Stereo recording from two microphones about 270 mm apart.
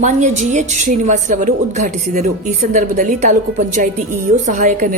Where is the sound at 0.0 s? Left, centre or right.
Right.